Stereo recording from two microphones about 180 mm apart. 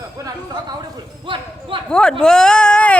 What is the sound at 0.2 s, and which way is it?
Speech, 20° right (ahead or behind).